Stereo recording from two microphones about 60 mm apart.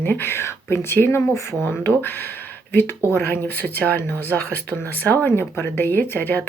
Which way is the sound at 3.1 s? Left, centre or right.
Left.